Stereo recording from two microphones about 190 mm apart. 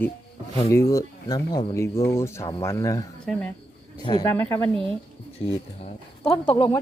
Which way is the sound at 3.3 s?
Centre (ahead or behind).